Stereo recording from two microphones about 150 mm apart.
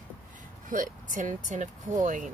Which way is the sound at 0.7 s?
60° right (ahead or behind).